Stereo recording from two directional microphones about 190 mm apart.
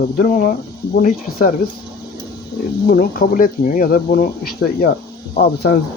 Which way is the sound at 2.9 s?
50° left (ahead or behind).